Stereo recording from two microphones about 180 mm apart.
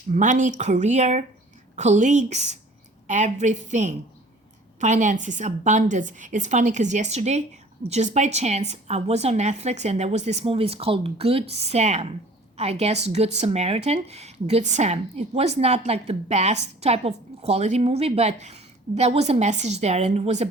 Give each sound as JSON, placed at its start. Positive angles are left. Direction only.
{"t": 0.1, "sound": "a woman's voice", "side_deg": -45}